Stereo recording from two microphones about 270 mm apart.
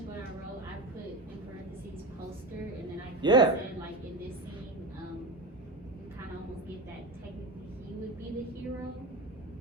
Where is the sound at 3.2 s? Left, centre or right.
Centre.